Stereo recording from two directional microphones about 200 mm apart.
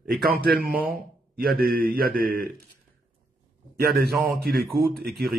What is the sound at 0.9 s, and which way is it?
A man's voice, 50° right (ahead or behind).